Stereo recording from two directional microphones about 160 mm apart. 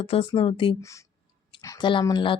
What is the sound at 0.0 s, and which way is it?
Speech, 35° left (ahead or behind).